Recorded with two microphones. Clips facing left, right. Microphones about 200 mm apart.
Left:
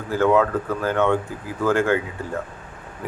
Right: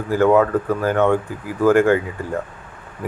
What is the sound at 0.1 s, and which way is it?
Speech, 15° right (ahead or behind).